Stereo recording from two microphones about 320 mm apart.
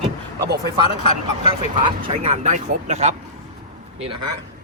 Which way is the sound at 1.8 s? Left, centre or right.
Centre.